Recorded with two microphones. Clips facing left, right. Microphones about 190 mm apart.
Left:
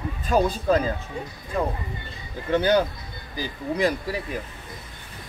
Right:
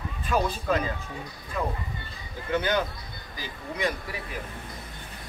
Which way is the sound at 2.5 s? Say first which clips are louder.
Left 6 dB; 40° left (ahead or behind).